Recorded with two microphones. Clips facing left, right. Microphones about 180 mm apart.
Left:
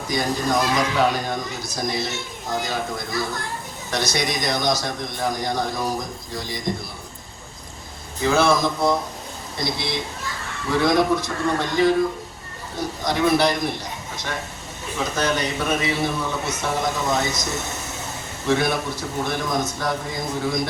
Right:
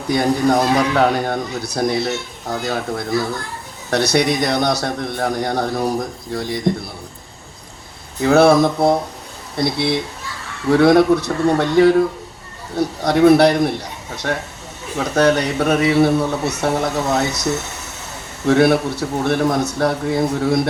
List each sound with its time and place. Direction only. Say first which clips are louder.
0.1 s a man's voice: right 7 dB; 60° right (ahead or behind)
8.2 s a man's voice: right 7 dB; 65° right (ahead or behind)